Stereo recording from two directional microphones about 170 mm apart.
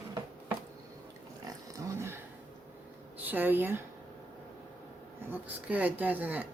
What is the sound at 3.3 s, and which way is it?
Speech, 10° right (ahead or behind).